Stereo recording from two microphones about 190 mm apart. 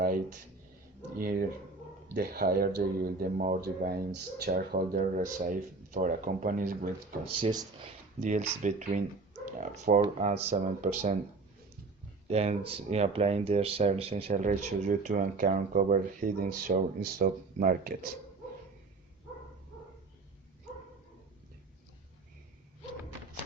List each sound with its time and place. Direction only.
0.0 s a sound: 45° right (ahead or behind)
1.2 s speech: 50° right (ahead or behind)
7.4 s speech: 25° right (ahead or behind)
8.2 s speech: 40° right (ahead or behind)
12.3 s speech: 35° right (ahead or behind)